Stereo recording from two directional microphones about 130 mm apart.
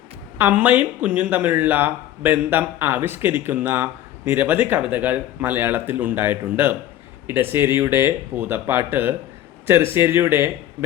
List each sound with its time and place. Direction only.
0.3 s speech: 15° right (ahead or behind)